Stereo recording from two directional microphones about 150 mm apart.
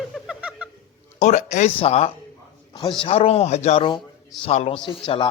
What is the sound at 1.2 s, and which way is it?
Music, 55° left (ahead or behind).